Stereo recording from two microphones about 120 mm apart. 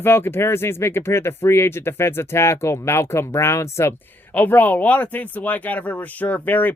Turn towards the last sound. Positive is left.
turn(degrees=15)  # may be behind; listen again after turning